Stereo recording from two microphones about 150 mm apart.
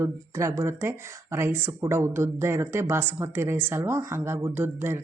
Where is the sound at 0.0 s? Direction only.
20° right (ahead or behind).